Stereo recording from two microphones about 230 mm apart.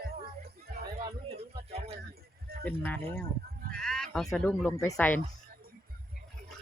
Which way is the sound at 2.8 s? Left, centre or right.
Centre.